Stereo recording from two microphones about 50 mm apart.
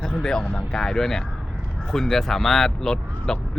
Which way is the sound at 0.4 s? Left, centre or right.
Left.